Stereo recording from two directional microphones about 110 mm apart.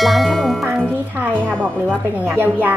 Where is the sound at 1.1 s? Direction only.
15° right (ahead or behind).